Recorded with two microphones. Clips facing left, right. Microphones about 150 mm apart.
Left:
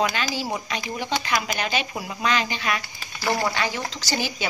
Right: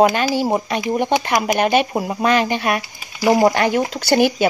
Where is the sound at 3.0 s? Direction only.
15° right (ahead or behind).